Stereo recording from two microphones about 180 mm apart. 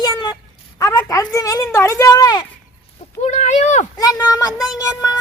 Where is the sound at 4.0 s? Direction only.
20° left (ahead or behind).